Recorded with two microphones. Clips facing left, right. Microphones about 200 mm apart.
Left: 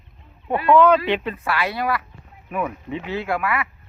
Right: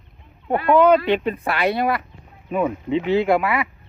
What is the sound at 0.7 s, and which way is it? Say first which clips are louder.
Speech: right 1 dB; 15° right (ahead or behind).